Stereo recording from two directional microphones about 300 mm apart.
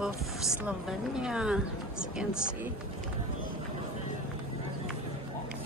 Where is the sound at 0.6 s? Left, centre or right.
Centre.